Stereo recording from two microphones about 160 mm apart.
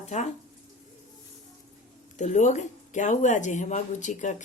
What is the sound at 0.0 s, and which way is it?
Speech, 45° left (ahead or behind).